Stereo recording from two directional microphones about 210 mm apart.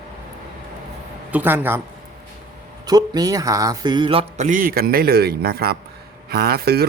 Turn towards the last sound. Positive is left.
turn(degrees=-50)  # may be behind; listen again after turning